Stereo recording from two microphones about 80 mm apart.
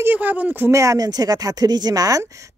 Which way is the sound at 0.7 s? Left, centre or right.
Right.